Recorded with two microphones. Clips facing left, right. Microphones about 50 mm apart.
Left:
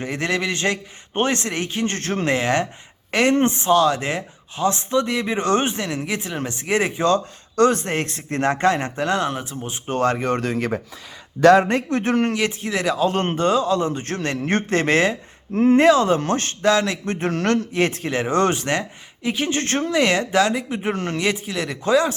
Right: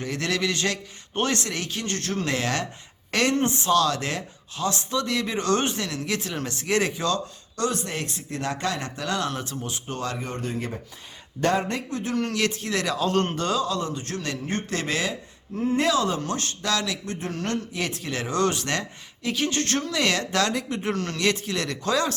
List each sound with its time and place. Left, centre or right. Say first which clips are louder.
0.0 s a woman's voice: left 3 dB; left
3.3 s speech: left 4 dB; left
7.0 s speech: left 7 dB; left
7.6 s speech: left 9 dB; left
9.8 s speech: left 13 dB; left
10.2 s speech: left 8 dB; left
11.4 s a man's voice: left 10 dB; left
11.8 s speech: left 8 dB; left
12.3 s speech: left 3 dB; centre
14.0 s speech: left 6 dB; left
15.5 s speech: left 10 dB; left
15.8 s speech: left 8 dB; left
17.7 s speech: left 9 dB; left
18.1 s speech: left 1 dB; left; by 22.1 s centre